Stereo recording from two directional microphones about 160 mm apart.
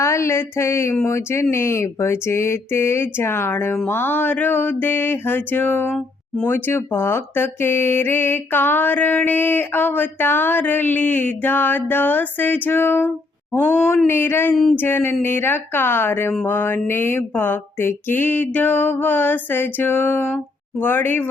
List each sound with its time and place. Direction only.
0.0 s mantra: 20° left (ahead or behind)
14.5 s a sound: centre (ahead or behind)
14.8 s mantra: 10° left (ahead or behind)